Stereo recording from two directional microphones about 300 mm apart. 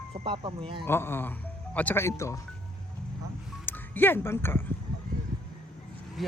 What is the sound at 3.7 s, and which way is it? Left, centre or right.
Speech, centre.